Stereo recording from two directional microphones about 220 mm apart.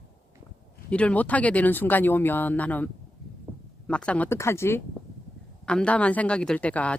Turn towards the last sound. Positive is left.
turn(degrees=5)  # may be behind; listen again after turning